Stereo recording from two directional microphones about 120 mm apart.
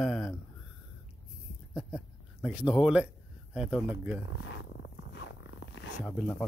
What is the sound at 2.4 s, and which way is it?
Speech, 10° right (ahead or behind).